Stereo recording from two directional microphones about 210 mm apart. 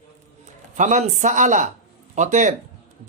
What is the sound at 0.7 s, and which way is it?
Speech, 35° right (ahead or behind).